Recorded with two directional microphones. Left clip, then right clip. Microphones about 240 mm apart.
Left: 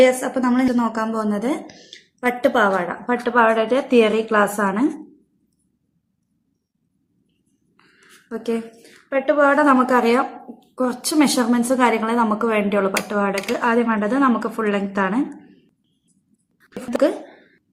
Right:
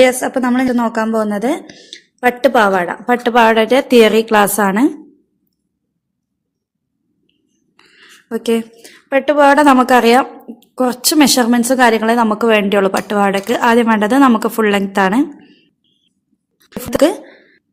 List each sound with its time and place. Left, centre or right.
0.0 s a woman's voice: right
8.3 s a woman's voice: right
16.9 s a woman's voice: right